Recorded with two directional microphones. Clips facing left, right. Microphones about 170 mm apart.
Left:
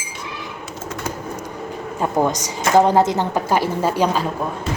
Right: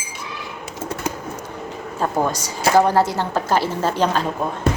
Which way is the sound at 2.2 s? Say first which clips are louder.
Left 1 dB; 20° left (ahead or behind).